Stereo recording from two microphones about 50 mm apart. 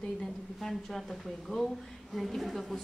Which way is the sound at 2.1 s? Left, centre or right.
Centre.